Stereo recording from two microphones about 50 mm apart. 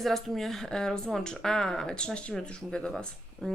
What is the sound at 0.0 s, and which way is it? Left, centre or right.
Speech, centre.